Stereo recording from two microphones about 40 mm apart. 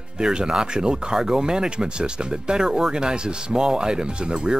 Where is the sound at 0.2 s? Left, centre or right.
Centre.